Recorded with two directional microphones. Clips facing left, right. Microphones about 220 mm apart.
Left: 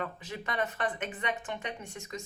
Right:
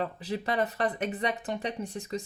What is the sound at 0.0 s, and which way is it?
Speech, 35° right (ahead or behind).